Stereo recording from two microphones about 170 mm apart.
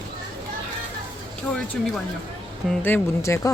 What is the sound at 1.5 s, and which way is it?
Music, 5° left (ahead or behind).